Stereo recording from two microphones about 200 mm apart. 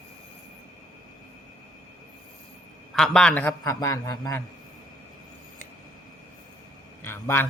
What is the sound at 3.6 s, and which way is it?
Speech, 15° left (ahead or behind).